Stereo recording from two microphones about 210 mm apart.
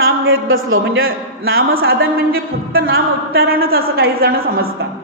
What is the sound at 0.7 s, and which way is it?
A man's voice, 75° right (ahead or behind).